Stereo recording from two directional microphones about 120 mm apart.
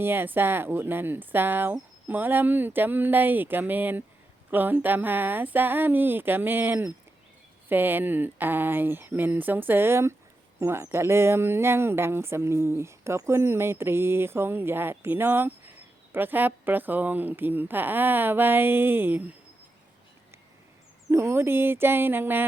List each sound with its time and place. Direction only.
0.0 s a woman's voice: 20° right (ahead or behind)
21.1 s speech: 20° right (ahead or behind)